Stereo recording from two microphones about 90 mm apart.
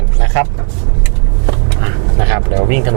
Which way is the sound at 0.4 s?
15° right (ahead or behind).